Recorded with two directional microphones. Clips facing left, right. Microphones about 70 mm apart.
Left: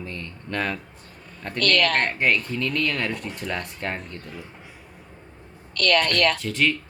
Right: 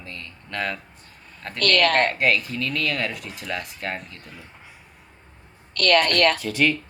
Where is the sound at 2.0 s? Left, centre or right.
Centre.